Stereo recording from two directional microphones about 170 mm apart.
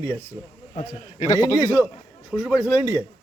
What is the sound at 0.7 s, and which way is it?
Speech, 40° left (ahead or behind).